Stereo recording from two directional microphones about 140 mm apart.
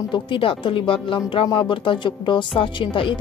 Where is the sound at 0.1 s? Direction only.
40° left (ahead or behind).